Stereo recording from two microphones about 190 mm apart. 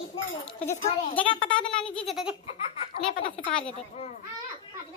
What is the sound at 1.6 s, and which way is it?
Speech, 5° left (ahead or behind).